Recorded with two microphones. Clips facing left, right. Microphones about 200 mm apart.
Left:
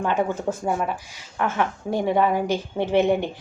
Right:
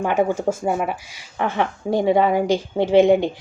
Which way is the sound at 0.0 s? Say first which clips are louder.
Right 4 dB; 10° right (ahead or behind).